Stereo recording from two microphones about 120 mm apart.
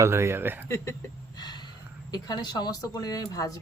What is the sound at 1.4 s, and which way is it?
Gasp, 35° left (ahead or behind).